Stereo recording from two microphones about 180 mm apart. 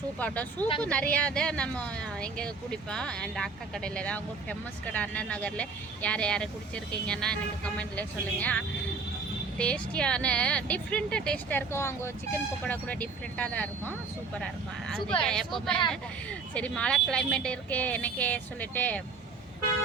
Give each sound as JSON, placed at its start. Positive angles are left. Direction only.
{"t": 0.2, "sound": "speech", "side_deg": 10}